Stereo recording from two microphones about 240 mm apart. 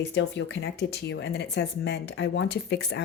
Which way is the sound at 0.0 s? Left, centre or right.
Left.